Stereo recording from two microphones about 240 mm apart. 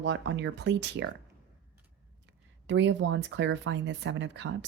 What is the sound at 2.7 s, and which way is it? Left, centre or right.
Speech, right.